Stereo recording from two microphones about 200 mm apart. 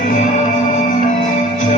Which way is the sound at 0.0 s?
40° left (ahead or behind).